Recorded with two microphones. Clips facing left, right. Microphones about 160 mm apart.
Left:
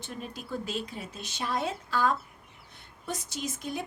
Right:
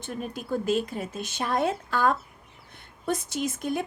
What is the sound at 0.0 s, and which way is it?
Speech, 50° right (ahead or behind).